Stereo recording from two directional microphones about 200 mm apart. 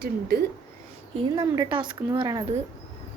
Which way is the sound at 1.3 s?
20° right (ahead or behind).